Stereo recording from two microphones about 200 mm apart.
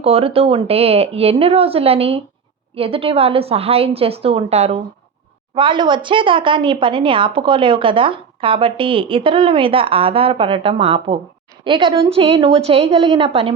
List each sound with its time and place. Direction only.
0.0 s a woman's voice: 30° right (ahead or behind)